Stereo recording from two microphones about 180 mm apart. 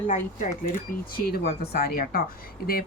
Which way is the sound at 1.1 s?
60° left (ahead or behind).